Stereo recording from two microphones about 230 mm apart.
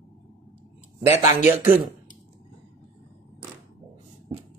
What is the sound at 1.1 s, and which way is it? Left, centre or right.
Speech, left.